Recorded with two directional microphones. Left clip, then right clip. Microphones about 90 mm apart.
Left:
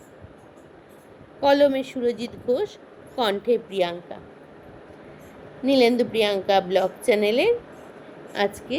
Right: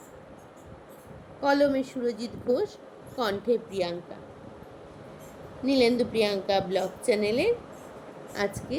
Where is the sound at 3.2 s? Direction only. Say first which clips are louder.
Left 5 dB; 25° left (ahead or behind).